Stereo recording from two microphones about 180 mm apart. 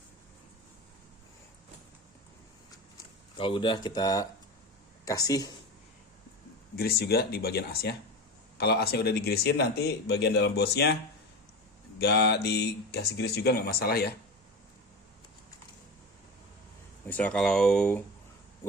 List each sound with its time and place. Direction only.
3.3 s speech: 30° left (ahead or behind)
6.7 s speech: 60° left (ahead or behind)
11.9 s speech: 65° left (ahead or behind)
17.1 s speech: 5° left (ahead or behind)